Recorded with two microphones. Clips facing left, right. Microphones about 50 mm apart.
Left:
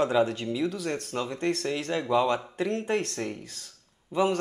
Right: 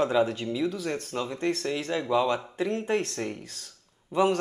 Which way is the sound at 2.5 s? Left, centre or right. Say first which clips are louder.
Even; right.